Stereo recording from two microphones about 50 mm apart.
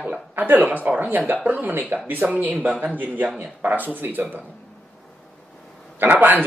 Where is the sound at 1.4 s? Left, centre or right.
Right.